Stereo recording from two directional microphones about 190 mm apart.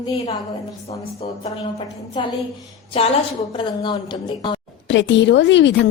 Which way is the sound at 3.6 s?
25° left (ahead or behind).